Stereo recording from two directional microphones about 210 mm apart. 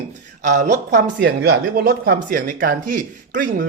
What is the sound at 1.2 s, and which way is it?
Speech, 50° right (ahead or behind).